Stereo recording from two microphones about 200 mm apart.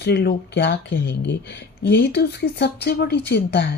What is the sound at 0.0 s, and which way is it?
Speech, 55° left (ahead or behind).